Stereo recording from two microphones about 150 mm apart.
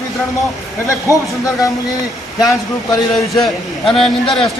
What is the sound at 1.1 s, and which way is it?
Speech, 20° left (ahead or behind).